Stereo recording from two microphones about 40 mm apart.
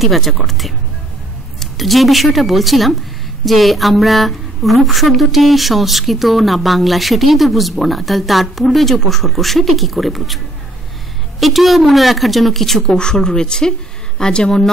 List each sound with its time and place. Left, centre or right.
0.0 s a woman's voice: centre
12.8 s a woman's voice: centre